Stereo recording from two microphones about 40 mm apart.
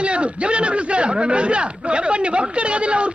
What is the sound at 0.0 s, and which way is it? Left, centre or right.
A man's voice, right.